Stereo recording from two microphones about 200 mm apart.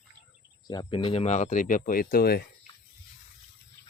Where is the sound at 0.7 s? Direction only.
20° left (ahead or behind); by 2.4 s 50° left (ahead or behind).